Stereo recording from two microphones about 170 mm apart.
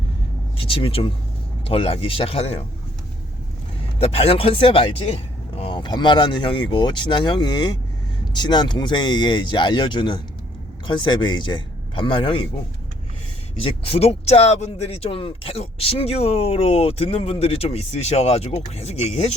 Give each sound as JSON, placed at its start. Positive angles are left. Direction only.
{"t": 0.5, "sound": "speech", "side_deg": 35}
{"t": 4.0, "sound": "speech", "side_deg": 35}
{"t": 13.6, "sound": "speech", "side_deg": 35}